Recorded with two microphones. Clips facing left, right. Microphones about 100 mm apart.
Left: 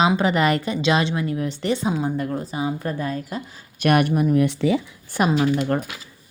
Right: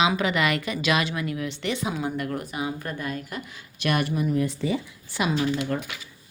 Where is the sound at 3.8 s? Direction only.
55° left (ahead or behind); by 4.8 s 85° left.